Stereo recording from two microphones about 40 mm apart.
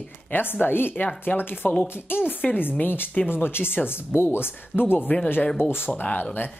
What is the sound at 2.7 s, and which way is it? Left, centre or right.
Speech, left.